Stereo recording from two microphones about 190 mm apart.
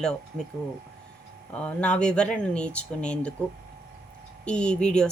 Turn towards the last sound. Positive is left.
turn(degrees=5)  # may be behind; listen again after turning